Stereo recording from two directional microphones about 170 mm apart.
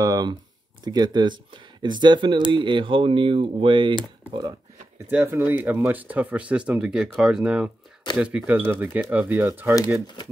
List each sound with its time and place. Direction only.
0.0 s speech: 20° right (ahead or behind)
4.3 s a sound: 25° right (ahead or behind)
5.1 s speech: 10° right (ahead or behind)